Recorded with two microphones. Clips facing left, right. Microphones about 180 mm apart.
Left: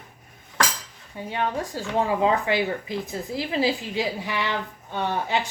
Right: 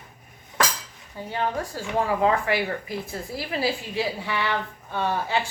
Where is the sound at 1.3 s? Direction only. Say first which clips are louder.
Even; 20° left (ahead or behind).